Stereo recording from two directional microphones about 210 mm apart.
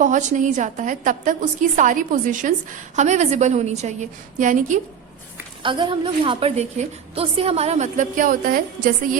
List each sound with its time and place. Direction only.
0.0 s a woman's voice: 35° right (ahead or behind)
5.6 s a woman's voice: 25° right (ahead or behind); by 8.9 s 40° right (ahead or behind)